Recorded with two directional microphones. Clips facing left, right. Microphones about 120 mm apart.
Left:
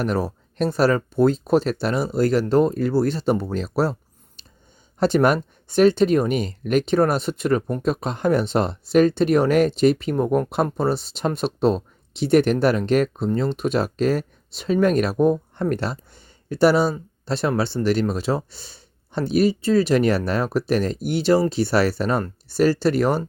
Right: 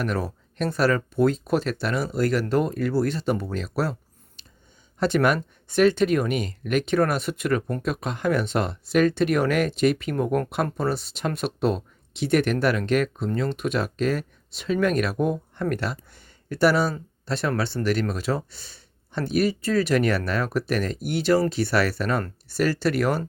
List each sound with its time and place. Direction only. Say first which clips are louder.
0.0 s speech: left 4 dB; 35° left (ahead or behind)
4.4 s a sound: left 2 dB; 35° left (ahead or behind)
4.9 s speech: left 3 dB; 35° left (ahead or behind)
17.7 s speech: left 4 dB; 15° left (ahead or behind)
18.1 s speech: left 3 dB; 30° left (ahead or behind)